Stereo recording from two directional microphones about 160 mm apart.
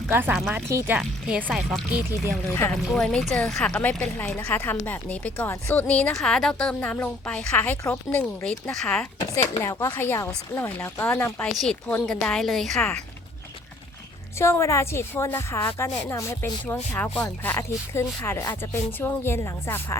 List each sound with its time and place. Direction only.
0.1 s speech: 10° right (ahead or behind)
0.7 s speech: 20° right (ahead or behind)
0.9 s speech: 5° right (ahead or behind)
9.2 s speech: 20° left (ahead or behind)
14.3 s speech: 15° left (ahead or behind)